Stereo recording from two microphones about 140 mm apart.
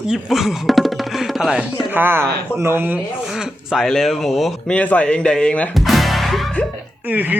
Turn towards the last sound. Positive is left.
turn(degrees=-10)  # may be behind; listen again after turning